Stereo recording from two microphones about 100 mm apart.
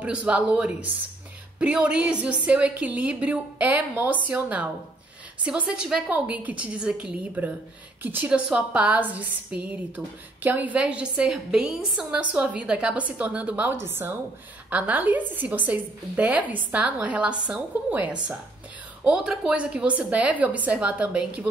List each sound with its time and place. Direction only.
0.0 s a woman's voice: 10° right (ahead or behind)